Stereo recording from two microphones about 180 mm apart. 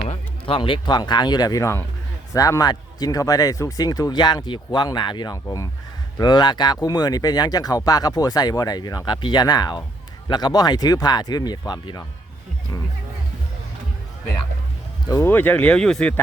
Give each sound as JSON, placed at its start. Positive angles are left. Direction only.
{"t": 0.1, "sound": "speech", "side_deg": 30}
{"t": 15.0, "sound": "speech", "side_deg": 15}